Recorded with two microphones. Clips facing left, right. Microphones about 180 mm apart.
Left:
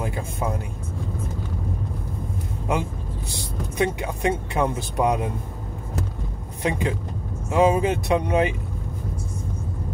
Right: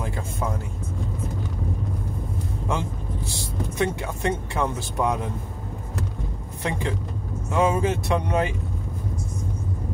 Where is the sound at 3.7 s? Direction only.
20° left (ahead or behind).